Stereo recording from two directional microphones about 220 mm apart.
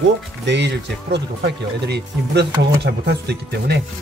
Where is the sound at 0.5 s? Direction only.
50° right (ahead or behind).